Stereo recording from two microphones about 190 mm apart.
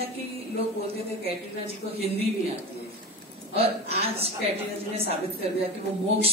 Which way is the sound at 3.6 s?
30° right (ahead or behind).